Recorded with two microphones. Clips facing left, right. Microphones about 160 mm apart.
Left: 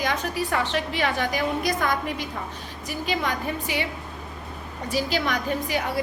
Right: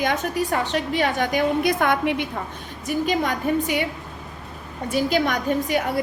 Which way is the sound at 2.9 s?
45° right (ahead or behind).